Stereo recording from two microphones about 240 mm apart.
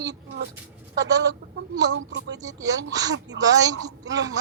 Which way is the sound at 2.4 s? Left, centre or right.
Centre.